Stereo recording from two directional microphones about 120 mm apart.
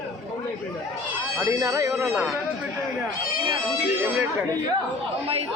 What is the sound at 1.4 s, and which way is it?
Speech, 25° right (ahead or behind).